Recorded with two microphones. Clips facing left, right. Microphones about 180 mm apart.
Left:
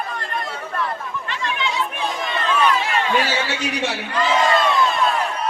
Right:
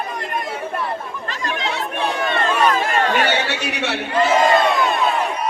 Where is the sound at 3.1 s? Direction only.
65° right (ahead or behind).